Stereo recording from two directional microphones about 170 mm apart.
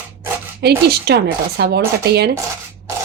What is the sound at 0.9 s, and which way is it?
Speech, 70° right (ahead or behind).